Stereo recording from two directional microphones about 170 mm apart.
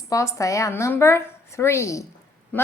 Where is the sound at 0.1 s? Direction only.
20° left (ahead or behind).